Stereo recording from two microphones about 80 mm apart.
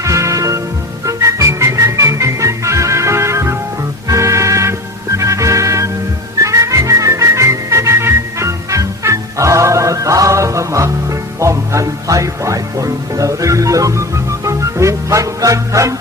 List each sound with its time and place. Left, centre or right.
0.0 s music: right